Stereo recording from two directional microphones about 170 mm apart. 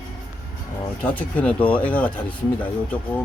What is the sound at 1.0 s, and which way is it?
Speech, 10° left (ahead or behind).